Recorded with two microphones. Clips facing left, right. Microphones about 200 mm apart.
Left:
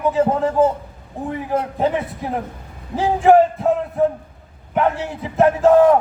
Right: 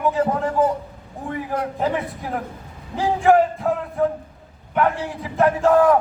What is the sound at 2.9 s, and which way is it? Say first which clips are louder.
Speech: left 3 dB; 20° left (ahead or behind).